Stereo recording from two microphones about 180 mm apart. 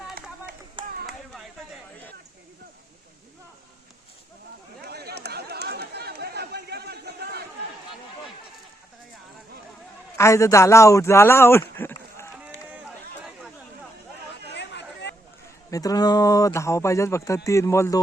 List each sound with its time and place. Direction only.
0.8 s chop: 25° right (ahead or behind)
4.8 s chatter: 65° right (ahead or behind)
10.2 s speech: 15° left (ahead or behind)
11.8 s a sound: 15° left (ahead or behind)
14.5 s chatter: 75° left (ahead or behind)
15.7 s speech: 20° left (ahead or behind)